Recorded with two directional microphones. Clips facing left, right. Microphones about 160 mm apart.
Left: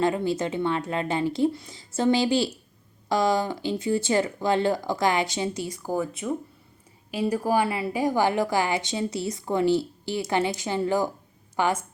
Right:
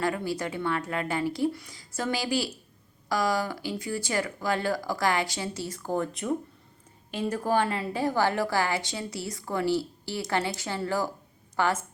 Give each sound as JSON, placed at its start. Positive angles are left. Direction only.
{"t": 0.0, "sound": "a woman's voice", "side_deg": 20}